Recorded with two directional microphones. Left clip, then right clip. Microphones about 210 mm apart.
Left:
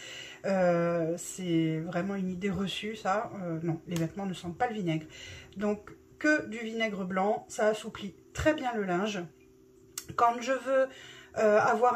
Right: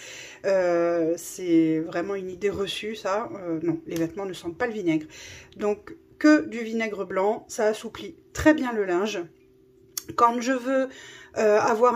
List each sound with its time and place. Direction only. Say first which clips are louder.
0.1 s speech: right 8 dB; 40° right (ahead or behind)